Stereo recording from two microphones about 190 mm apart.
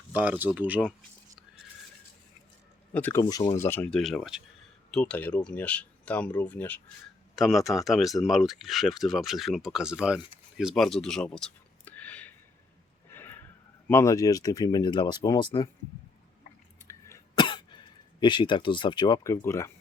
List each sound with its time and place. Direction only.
0.1 s speech: 10° right (ahead or behind)
2.9 s speech: 10° left (ahead or behind)
10.6 s a sound: centre (ahead or behind)
13.8 s speech: 15° left (ahead or behind)
17.1 s cough: 25° left (ahead or behind)
18.2 s speech: 25° left (ahead or behind)